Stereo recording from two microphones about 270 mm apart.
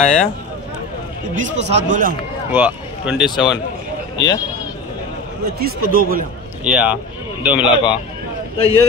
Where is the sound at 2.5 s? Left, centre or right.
Centre.